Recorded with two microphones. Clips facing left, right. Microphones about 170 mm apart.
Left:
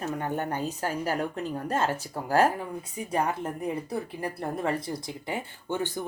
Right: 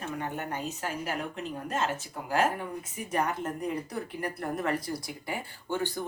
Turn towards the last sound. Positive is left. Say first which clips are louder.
# left 1 dB
turn(degrees=20)  # may be behind; listen again after turning